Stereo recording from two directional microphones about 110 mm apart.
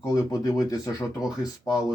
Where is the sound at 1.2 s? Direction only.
5° right (ahead or behind).